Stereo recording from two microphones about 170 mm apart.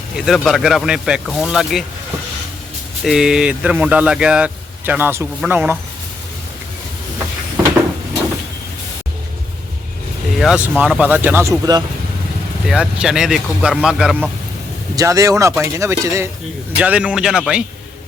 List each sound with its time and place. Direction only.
0.2 s speech: centre (ahead or behind)
3.0 s speech: 5° right (ahead or behind)
10.3 s speech: 5° right (ahead or behind); by 11.8 s 20° right (ahead or behind)
12.6 s speech: 5° right (ahead or behind)
14.9 s speech: 20° right (ahead or behind)